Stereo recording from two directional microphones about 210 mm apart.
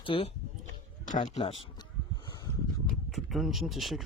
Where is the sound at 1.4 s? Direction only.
25° left (ahead or behind).